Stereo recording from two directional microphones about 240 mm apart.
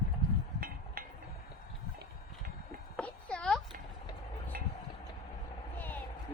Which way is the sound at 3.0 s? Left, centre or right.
Centre.